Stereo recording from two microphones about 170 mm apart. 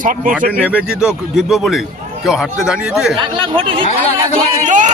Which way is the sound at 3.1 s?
30° right (ahead or behind).